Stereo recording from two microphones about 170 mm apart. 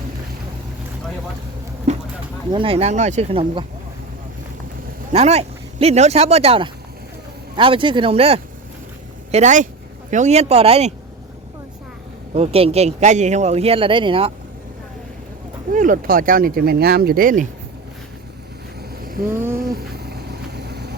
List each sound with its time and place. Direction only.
1.9 s a sound: 40° right (ahead or behind)
2.5 s speech: 30° right (ahead or behind)
5.1 s speech: 35° right (ahead or behind)
12.3 s speech: 35° right (ahead or behind)
15.7 s speech: 50° right (ahead or behind)
19.0 s vehicle: 55° right (ahead or behind)
19.5 s a sound: 60° right (ahead or behind)